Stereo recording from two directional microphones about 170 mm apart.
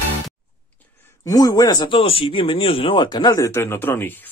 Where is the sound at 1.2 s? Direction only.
20° left (ahead or behind).